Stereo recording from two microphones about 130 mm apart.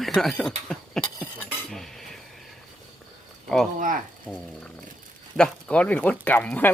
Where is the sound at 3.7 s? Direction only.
90° right.